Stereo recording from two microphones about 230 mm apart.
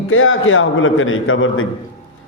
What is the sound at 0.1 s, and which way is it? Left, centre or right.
A man's voice, left.